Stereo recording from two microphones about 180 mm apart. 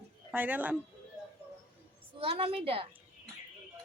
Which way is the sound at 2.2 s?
30° right (ahead or behind).